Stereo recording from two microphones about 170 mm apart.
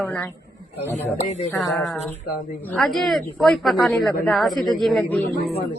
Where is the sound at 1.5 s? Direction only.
Centre (ahead or behind).